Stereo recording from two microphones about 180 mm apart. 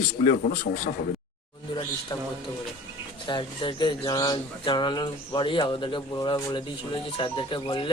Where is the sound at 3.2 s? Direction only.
25° left (ahead or behind).